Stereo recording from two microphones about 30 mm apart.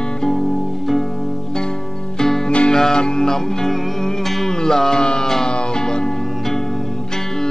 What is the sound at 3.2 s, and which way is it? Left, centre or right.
Music, centre.